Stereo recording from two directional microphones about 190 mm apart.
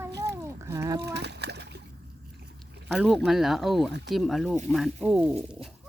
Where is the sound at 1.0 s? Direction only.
60° right (ahead or behind).